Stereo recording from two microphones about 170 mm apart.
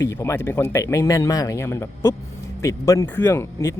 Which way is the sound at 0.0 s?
15° left (ahead or behind).